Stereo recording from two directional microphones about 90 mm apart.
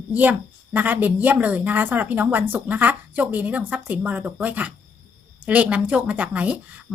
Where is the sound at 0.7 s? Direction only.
20° right (ahead or behind).